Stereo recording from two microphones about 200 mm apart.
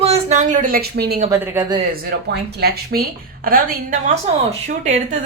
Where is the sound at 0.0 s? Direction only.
30° right (ahead or behind); by 1.2 s 50° right (ahead or behind).